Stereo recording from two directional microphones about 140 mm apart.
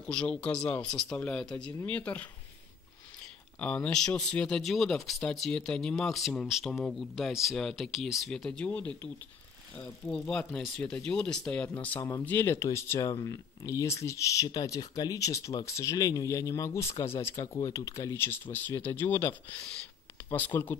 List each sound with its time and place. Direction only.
0.0 s speech: 5° left (ahead or behind)
3.5 s speech: 10° left (ahead or behind)